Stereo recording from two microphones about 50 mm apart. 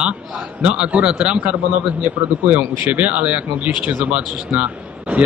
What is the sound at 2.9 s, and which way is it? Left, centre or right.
Speech, right.